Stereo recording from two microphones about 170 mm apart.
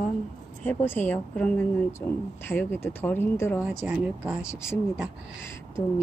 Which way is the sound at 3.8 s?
10° right (ahead or behind).